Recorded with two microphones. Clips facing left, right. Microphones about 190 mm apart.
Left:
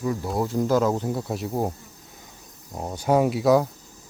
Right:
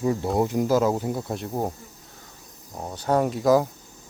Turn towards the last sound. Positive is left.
turn(degrees=5)  # may be behind; listen again after turning